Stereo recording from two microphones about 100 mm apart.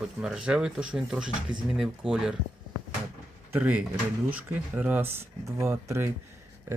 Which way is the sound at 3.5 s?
15° right (ahead or behind).